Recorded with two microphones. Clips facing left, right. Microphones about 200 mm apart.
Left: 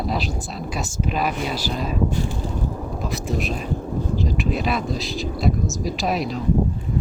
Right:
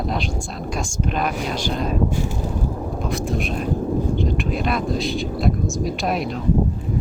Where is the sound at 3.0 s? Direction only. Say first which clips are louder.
Right 1 dB; centre (ahead or behind).